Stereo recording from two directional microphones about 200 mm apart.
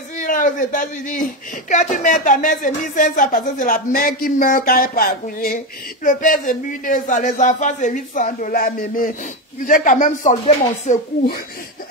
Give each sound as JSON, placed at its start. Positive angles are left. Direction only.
{"t": 0.2, "sound": "a man's voice", "side_deg": 40}